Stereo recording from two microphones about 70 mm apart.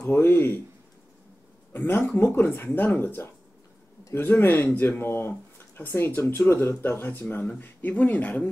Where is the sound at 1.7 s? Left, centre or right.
Left.